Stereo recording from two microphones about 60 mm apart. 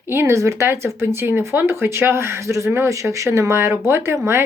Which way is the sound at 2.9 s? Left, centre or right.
Right.